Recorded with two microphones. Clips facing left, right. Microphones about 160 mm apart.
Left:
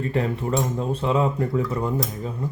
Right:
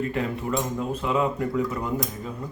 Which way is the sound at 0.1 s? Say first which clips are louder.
Left 3 dB; 35° left (ahead or behind).